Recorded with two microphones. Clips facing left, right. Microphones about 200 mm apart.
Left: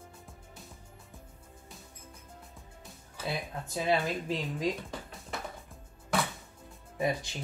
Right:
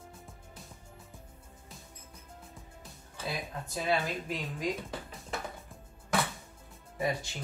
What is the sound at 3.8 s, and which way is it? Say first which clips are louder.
Speech: left 2 dB; 25° left (ahead or behind).